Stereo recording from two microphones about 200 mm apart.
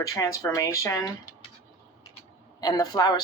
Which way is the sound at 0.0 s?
15° left (ahead or behind).